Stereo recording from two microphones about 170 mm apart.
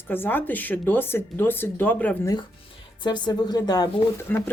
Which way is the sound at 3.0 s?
25° left (ahead or behind).